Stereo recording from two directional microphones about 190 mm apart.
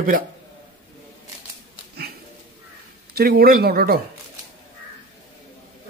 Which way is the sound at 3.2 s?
55° right (ahead or behind).